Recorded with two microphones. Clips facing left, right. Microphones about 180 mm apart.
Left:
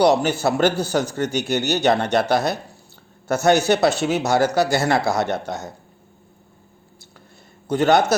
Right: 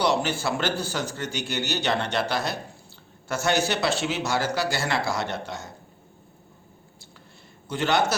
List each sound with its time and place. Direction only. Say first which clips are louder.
0.0 s speech: left 7 dB; 40° left (ahead or behind)
7.7 s speech: left 7 dB; 40° left (ahead or behind)